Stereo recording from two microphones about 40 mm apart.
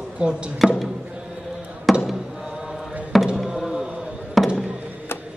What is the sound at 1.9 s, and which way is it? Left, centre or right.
Basketball bounce, centre.